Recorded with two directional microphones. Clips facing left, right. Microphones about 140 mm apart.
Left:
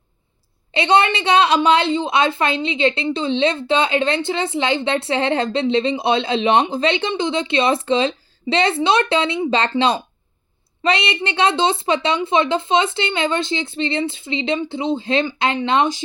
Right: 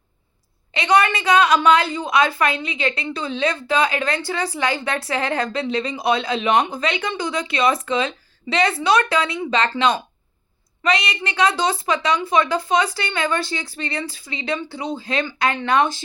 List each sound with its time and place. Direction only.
0.7 s a woman's voice: 25° left (ahead or behind)